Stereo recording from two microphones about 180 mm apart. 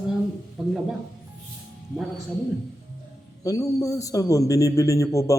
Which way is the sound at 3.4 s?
20° left (ahead or behind).